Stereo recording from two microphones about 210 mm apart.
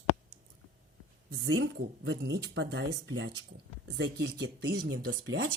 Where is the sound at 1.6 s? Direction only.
50° right (ahead or behind).